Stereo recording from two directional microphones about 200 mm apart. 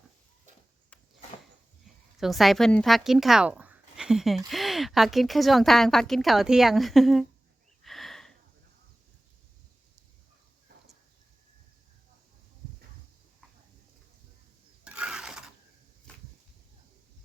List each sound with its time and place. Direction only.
2.1 s speech: centre (ahead or behind)
7.9 s sniff: centre (ahead or behind)
14.8 s mechanisms: 5° right (ahead or behind)